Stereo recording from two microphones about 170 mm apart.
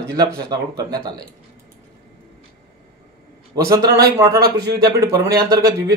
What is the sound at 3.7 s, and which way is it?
Speech, 20° right (ahead or behind).